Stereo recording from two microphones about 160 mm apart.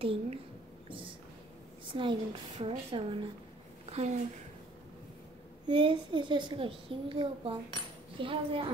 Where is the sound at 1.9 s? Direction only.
30° right (ahead or behind).